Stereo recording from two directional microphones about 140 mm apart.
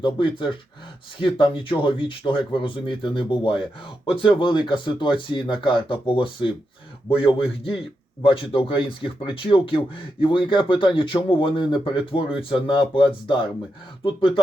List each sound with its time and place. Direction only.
0.0 s speech: 35° left (ahead or behind)
14.0 s speech: 40° left (ahead or behind)